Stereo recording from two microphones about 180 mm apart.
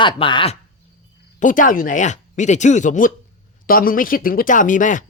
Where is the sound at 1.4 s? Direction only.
45° left (ahead or behind).